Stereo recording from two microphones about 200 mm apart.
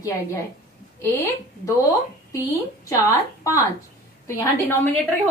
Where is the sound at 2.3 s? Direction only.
15° left (ahead or behind).